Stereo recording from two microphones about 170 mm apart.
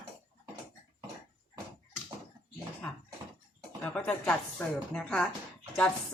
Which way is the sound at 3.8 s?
5° left (ahead or behind).